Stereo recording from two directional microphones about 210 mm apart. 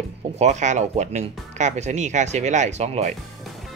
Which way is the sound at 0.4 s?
35° right (ahead or behind).